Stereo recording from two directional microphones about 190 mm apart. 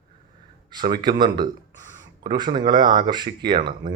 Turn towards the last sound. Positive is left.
turn(degrees=-25)  # may be behind; listen again after turning